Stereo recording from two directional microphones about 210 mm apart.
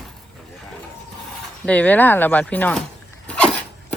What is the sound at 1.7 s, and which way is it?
Speech, 5° left (ahead or behind).